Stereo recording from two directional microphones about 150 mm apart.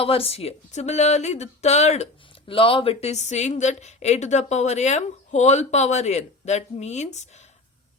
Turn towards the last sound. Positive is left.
turn(degrees=50)  # may be behind; listen again after turning